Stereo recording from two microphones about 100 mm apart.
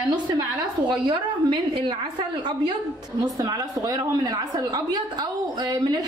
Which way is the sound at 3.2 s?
40° right (ahead or behind).